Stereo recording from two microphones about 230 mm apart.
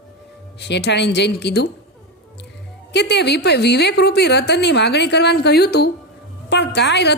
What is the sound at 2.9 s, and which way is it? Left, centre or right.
A woman's voice, left.